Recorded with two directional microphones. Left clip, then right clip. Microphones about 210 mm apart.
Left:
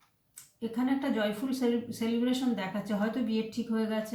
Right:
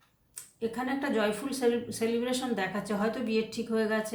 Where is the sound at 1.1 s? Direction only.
35° right (ahead or behind).